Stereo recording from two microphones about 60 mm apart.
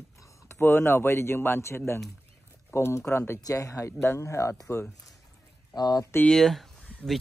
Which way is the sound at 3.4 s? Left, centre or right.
Left.